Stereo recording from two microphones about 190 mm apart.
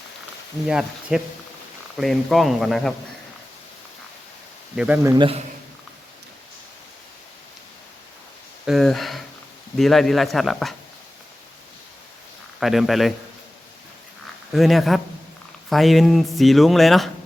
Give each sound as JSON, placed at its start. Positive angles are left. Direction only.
{"t": 0.7, "sound": "speech", "side_deg": -5}
{"t": 4.8, "sound": "speech", "side_deg": -10}
{"t": 5.1, "sound": "a man's voice", "side_deg": -25}
{"t": 8.6, "sound": "speech", "side_deg": 0}
{"t": 12.5, "sound": "speech", "side_deg": 0}
{"t": 14.5, "sound": "speech", "side_deg": 0}